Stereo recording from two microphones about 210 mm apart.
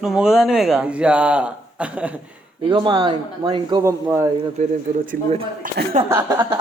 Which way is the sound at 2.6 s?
20° right (ahead or behind).